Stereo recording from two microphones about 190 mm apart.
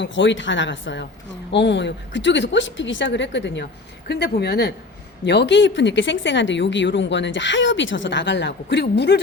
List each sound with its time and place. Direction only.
0.0 s speech: 70° left (ahead or behind)
4.1 s speech: 60° left (ahead or behind)